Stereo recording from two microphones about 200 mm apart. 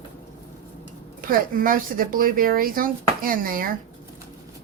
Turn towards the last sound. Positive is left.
turn(degrees=-45)  # may be behind; listen again after turning